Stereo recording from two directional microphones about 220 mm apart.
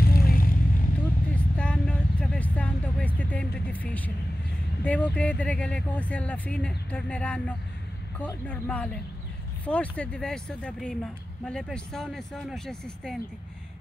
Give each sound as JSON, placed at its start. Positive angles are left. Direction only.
{"t": 0.0, "sound": "vehicle", "side_deg": 45}
{"t": 1.3, "sound": "vehicle", "side_deg": 5}
{"t": 4.8, "sound": "speech", "side_deg": 5}